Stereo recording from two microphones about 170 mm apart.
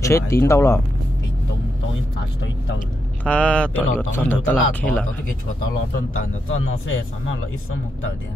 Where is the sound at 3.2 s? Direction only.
10° left (ahead or behind).